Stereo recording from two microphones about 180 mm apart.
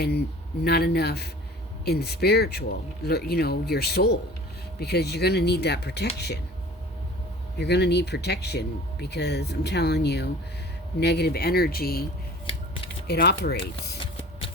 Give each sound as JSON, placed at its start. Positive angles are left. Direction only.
{"t": 0.6, "sound": "speech", "side_deg": 60}
{"t": 7.6, "sound": "speech", "side_deg": 70}
{"t": 12.5, "sound": "scissors", "side_deg": 30}
{"t": 13.1, "sound": "speech", "side_deg": 65}